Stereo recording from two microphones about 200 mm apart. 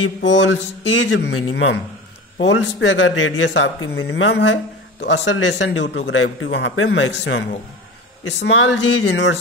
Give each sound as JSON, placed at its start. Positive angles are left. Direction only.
{"t": 0.0, "sound": "a man's voice", "side_deg": 65}